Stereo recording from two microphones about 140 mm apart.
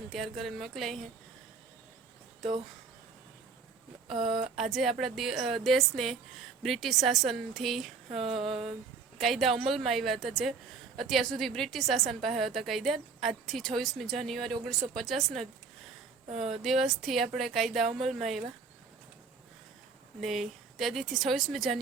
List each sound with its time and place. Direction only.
0.1 s a woman's voice: centre (ahead or behind)
4.1 s speech: 40° right (ahead or behind)
4.5 s a woman's voice: centre (ahead or behind)
8.2 s speech: 40° right (ahead or behind)
9.1 s a woman's voice: centre (ahead or behind)
16.5 s a woman's voice: centre (ahead or behind)
20.2 s a woman's voice: centre (ahead or behind)